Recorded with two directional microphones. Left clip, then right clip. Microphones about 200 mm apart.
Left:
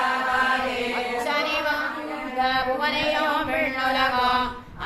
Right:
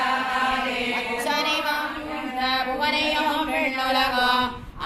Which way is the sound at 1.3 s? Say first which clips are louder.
Right 1 dB; 20° right (ahead or behind).